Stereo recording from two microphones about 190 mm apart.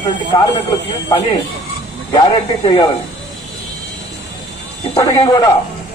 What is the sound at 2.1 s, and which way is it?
Speech, 25° left (ahead or behind).